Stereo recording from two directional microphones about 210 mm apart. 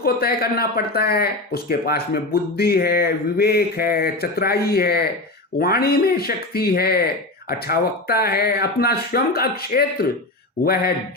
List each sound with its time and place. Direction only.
0.0 s speech: 45° left (ahead or behind)